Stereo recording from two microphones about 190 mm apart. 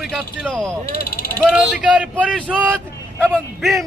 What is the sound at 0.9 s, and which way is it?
Speech, 50° left (ahead or behind).